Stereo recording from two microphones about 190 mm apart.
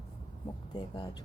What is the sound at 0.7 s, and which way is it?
Speech, 25° left (ahead or behind).